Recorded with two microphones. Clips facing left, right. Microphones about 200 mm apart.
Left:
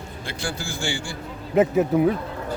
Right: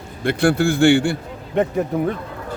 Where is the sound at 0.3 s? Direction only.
60° right (ahead or behind).